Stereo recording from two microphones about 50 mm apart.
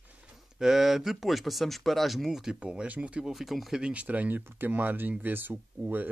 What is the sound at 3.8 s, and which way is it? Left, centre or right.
Speech, right.